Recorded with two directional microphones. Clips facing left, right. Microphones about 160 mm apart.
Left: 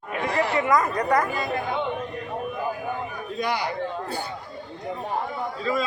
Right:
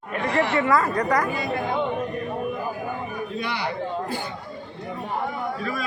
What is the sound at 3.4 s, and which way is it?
Speech, 45° left (ahead or behind).